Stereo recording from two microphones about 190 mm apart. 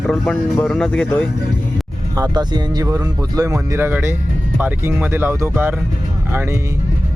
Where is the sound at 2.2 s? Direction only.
20° right (ahead or behind).